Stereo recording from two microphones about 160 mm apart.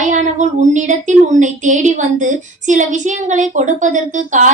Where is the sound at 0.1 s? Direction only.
50° right (ahead or behind).